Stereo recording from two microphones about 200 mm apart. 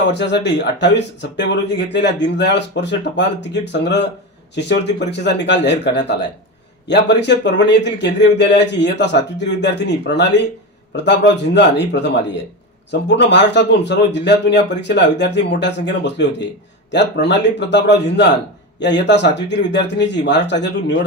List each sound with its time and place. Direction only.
0.1 s speech: 60° left (ahead or behind)